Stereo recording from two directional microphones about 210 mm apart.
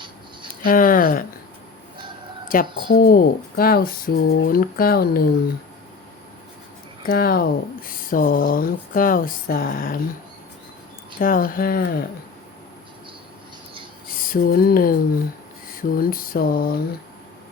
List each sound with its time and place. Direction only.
0.6 s speech: 40° left (ahead or behind)
2.5 s speech: 45° left (ahead or behind)
7.0 s speech: 45° left (ahead or behind)
11.2 s speech: 40° left (ahead or behind)
14.3 s speech: 45° left (ahead or behind)